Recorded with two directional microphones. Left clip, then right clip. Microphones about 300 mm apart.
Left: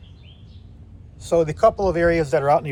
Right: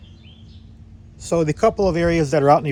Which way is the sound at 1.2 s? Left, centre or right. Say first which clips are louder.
Left 1 dB; right.